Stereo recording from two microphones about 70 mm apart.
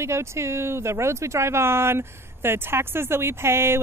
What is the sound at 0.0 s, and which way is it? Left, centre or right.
Speech, right.